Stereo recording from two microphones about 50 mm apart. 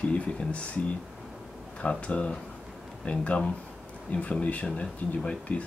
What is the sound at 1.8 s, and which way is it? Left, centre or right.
Speech, left.